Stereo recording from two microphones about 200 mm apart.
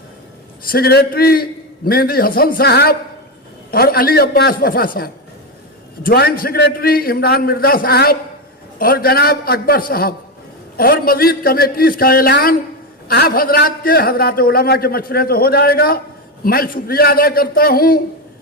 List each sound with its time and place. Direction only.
0.7 s a man's voice: 50° left (ahead or behind)